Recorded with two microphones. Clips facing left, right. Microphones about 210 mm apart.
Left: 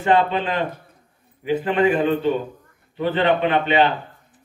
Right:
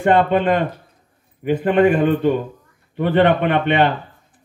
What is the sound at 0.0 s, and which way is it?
Speech, 55° right (ahead or behind).